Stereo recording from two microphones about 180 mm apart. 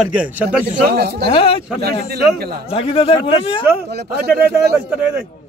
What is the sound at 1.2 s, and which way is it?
Speech, 30° left (ahead or behind).